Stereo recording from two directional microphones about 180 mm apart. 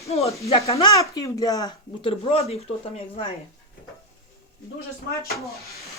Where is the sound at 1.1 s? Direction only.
20° left (ahead or behind); by 3.2 s 35° left (ahead or behind).